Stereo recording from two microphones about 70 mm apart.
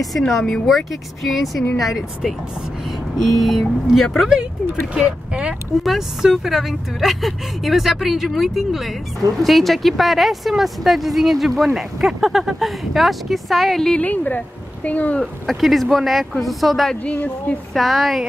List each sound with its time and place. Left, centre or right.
0.3 s speech: centre
4.9 s speech: centre
5.9 s speech: centre
14.0 s speech: left
15.4 s speech: centre
16.9 s a woman's voice: left
17.7 s speech: centre